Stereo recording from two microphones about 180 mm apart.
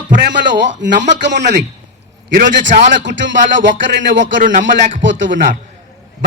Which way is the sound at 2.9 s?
85° right.